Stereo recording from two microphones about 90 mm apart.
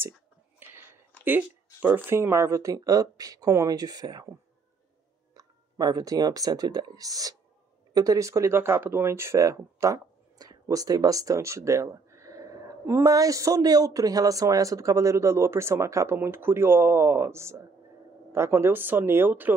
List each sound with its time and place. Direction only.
2.0 s speech: 30° right (ahead or behind); by 4.3 s 45° right (ahead or behind)
5.3 s speech: 45° right (ahead or behind); by 19.5 s 20° right (ahead or behind)